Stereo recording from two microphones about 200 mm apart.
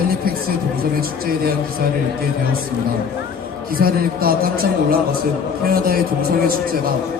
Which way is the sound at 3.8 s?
50° right (ahead or behind).